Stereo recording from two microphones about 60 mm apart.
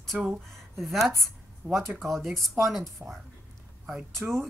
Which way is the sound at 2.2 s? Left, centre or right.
Right.